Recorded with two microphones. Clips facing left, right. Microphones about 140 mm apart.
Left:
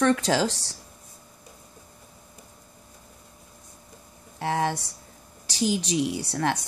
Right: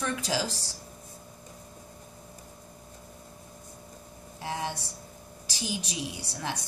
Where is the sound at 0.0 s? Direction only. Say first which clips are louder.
Left 9 dB; 75° left (ahead or behind).